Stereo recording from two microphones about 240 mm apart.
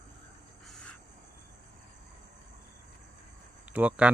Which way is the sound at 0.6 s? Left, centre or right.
Centre.